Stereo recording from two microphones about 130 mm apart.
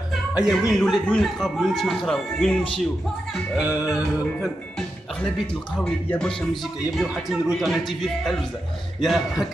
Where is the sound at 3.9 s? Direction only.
5° left (ahead or behind).